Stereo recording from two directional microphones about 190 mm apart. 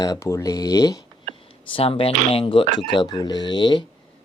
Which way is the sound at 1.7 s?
30° left (ahead or behind).